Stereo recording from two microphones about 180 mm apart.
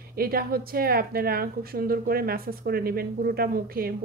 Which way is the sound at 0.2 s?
55° right (ahead or behind).